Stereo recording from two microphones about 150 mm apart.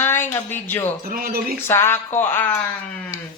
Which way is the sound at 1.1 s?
80° right.